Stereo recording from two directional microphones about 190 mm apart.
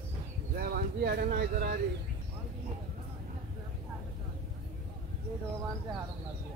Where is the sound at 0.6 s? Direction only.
50° right (ahead or behind).